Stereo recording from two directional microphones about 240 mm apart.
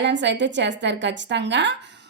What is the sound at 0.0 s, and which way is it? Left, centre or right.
A woman's voice, right.